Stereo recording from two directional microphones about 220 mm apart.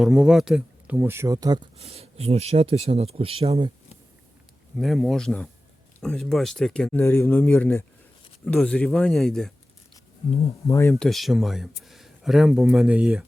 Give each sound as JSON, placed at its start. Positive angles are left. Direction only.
{"t": 0.0, "sound": "speech", "side_deg": 0}
{"t": 4.8, "sound": "speech", "side_deg": 0}
{"t": 10.7, "sound": "speech", "side_deg": 10}
{"t": 11.0, "sound": "speech", "side_deg": 0}